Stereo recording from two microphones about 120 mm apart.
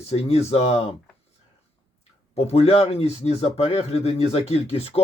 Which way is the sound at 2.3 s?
60° left (ahead or behind).